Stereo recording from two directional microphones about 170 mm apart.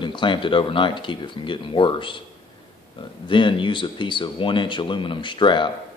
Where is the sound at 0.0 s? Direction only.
30° left (ahead or behind).